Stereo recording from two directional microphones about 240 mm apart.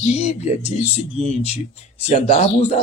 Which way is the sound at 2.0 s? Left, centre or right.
Left.